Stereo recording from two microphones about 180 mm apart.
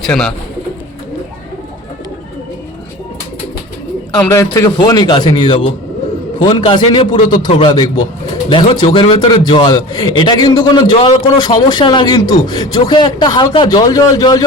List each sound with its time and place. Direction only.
0.0 s speech: 5° left (ahead or behind)
4.2 s speech: 15° left (ahead or behind)